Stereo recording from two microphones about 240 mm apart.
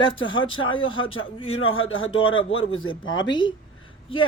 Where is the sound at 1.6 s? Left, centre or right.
Left.